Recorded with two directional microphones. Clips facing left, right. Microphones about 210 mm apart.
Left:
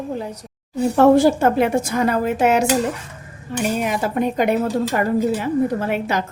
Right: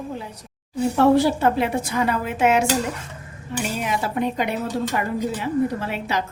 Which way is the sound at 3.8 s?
50° left (ahead or behind).